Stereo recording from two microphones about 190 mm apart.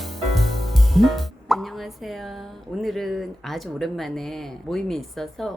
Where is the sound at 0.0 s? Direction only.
Centre (ahead or behind).